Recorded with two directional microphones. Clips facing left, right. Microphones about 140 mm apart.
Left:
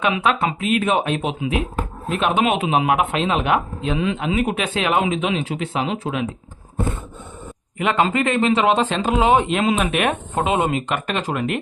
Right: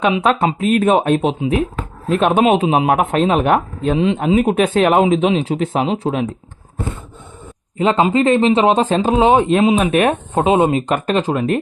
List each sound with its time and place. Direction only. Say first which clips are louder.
0.0 s speech: right 4 dB; 35° right (ahead or behind)
3.9 s speech: right 6 dB; 30° right (ahead or behind)
4.2 s speech: right 7 dB; 40° right (ahead or behind)
7.8 s speech: right 5 dB; 35° right (ahead or behind)